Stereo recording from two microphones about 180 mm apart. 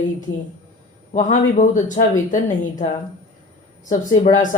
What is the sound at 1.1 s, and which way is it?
Speech, 40° left (ahead or behind).